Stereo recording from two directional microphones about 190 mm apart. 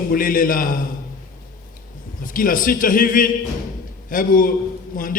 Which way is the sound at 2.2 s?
45° left (ahead or behind).